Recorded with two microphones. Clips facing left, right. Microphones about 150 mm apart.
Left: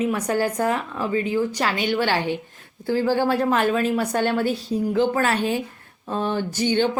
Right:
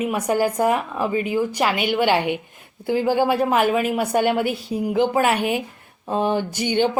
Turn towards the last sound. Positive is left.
turn(degrees=-15)  # may be behind; listen again after turning